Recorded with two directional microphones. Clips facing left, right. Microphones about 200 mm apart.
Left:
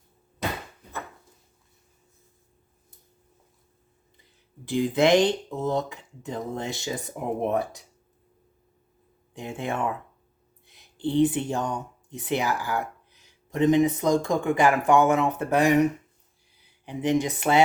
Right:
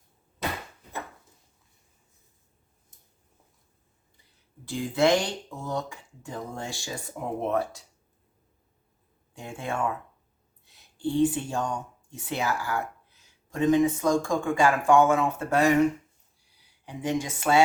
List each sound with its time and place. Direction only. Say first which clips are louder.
4.6 s speech: left 2 dB; 20° left (ahead or behind)
9.3 s speech: left 3 dB; 20° left (ahead or behind)
10.9 s speech: left 2 dB; 20° left (ahead or behind)